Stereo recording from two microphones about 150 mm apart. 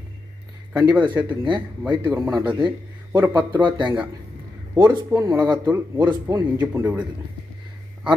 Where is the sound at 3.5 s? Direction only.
30° right (ahead or behind).